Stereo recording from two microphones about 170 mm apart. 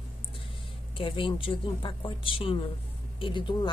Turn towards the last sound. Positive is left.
turn(degrees=30)  # may be behind; listen again after turning